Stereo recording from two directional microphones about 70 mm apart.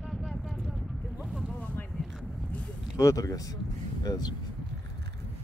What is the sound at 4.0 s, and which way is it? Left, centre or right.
Speech, left.